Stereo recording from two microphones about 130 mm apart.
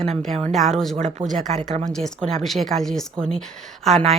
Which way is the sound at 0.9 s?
70° right (ahead or behind).